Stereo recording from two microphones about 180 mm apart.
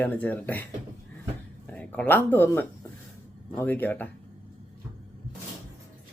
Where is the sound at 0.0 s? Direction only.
10° left (ahead or behind).